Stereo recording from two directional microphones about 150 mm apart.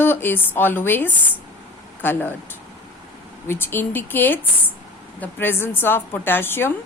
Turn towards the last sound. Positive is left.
turn(degrees=15)  # may be behind; listen again after turning